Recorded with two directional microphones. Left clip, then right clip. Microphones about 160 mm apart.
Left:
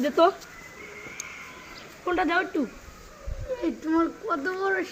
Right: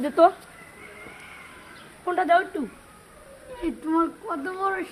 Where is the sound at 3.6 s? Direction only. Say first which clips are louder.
Right 1 dB; centre (ahead or behind).